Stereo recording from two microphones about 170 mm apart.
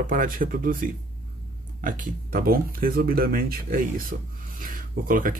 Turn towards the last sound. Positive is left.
turn(degrees=-55)  # may be behind; listen again after turning